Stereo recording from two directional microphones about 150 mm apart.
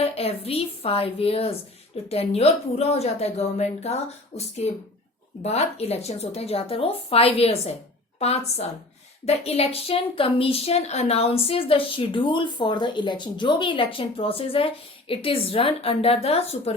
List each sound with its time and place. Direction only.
0.0 s a woman's voice: 40° left (ahead or behind)